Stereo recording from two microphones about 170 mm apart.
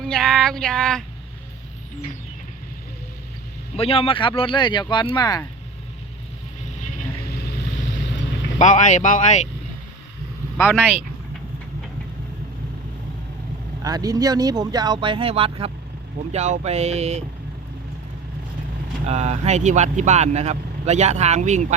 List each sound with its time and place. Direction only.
0.0 s a sound: 5° left (ahead or behind)
3.8 s speech: 35° left (ahead or behind)
7.3 s vehicle: 70° left (ahead or behind)
8.5 s speech: 45° left (ahead or behind)
10.6 s speech: 10° left (ahead or behind)
13.8 s speech: 20° right (ahead or behind); by 17.2 s 40° right (ahead or behind)
19.0 s speech: 40° right (ahead or behind)